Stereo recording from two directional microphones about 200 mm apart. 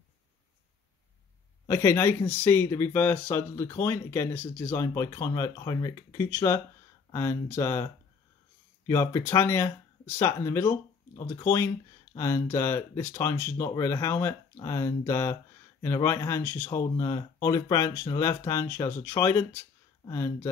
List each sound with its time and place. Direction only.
1.7 s speech: 15° left (ahead or behind)